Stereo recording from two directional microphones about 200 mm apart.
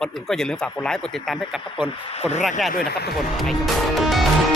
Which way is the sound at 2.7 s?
50° left (ahead or behind).